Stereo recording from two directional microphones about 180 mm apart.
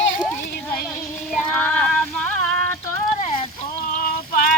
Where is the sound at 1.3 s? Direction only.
5° left (ahead or behind).